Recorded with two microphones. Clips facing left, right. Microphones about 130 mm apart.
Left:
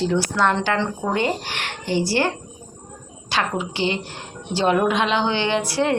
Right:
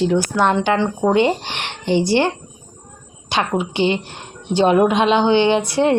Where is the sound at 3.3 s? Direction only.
20° right (ahead or behind).